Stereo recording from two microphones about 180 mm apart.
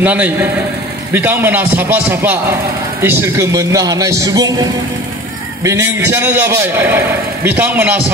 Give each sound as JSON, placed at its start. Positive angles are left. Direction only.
{"t": 0.0, "sound": "speech", "side_deg": -10}
{"t": 5.6, "sound": "speech", "side_deg": -15}